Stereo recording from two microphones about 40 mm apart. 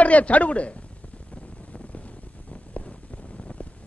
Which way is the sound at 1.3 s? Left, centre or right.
Left.